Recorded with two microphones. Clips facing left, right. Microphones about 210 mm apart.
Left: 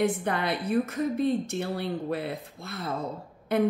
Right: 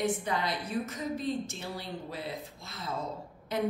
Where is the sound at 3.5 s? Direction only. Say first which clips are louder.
Left 7 dB; 60° left (ahead or behind).